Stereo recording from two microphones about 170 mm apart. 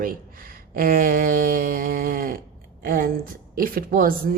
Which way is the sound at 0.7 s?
60° right (ahead or behind).